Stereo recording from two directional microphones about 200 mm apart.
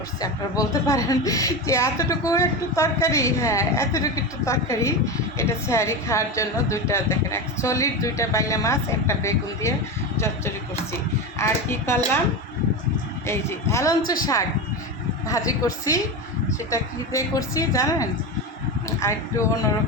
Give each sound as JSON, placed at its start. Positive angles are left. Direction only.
{"t": 0.2, "sound": "a woman's voice", "side_deg": 15}
{"t": 13.2, "sound": "a woman's voice", "side_deg": 15}